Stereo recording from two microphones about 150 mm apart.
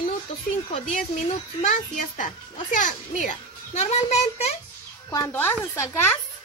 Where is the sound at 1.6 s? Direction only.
55° left (ahead or behind).